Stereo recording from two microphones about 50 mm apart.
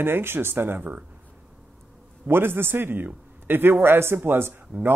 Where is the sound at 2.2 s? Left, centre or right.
Right.